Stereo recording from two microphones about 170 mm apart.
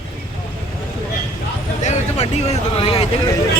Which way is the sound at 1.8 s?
40° left (ahead or behind).